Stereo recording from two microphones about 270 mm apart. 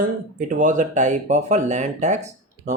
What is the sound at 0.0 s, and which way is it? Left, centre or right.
Speech, right.